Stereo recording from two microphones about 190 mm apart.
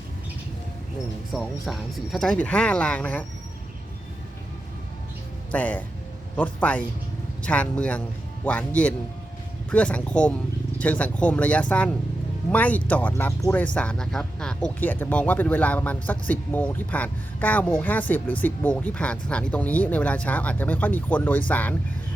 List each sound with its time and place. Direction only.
1.3 s speech: centre (ahead or behind)
5.5 s speech: 10° left (ahead or behind)